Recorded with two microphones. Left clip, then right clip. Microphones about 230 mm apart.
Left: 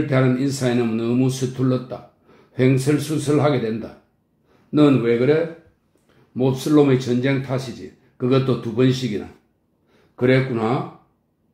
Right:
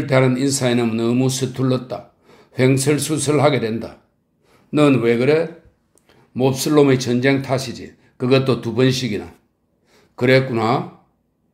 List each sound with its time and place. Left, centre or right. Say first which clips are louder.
0.1 s speech: right 7 dB; right